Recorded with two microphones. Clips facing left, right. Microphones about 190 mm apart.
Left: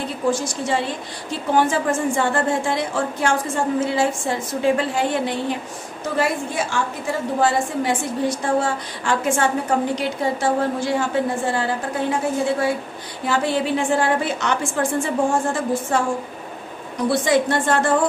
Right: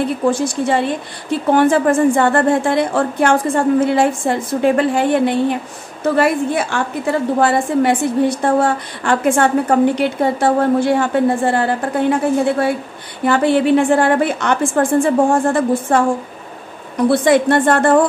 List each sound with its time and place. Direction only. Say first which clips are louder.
0.3 s a woman's voice: right 5 dB; 60° right (ahead or behind)
17.1 s a woman's voice: right 5 dB; 60° right (ahead or behind)